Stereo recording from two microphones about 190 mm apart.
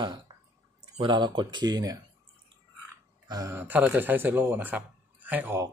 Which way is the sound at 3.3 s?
15° right (ahead or behind).